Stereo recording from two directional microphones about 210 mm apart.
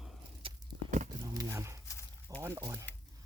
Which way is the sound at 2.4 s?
15° right (ahead or behind).